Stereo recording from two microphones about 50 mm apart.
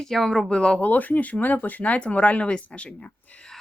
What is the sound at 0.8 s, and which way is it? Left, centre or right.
Speech, left.